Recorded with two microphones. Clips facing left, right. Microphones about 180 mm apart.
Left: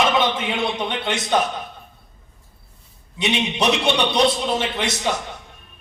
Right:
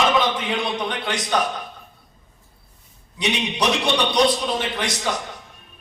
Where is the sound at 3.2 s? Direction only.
25° left (ahead or behind).